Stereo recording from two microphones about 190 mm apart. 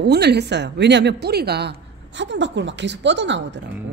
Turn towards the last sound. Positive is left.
turn(degrees=-70)  # may be behind; listen again after turning